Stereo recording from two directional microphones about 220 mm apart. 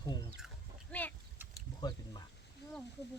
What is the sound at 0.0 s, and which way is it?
Chicken, 20° left (ahead or behind).